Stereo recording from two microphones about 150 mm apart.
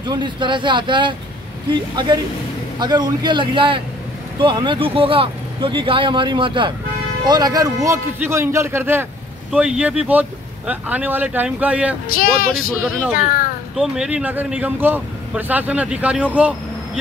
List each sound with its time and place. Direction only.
0.0 s a man's voice: 30° right (ahead or behind); by 12.0 s 10° right (ahead or behind)
12.1 s speech: 75° left (ahead or behind)
13.7 s speech: 5° right (ahead or behind)